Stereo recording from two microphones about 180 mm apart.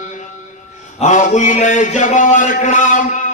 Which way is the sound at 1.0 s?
45° left (ahead or behind).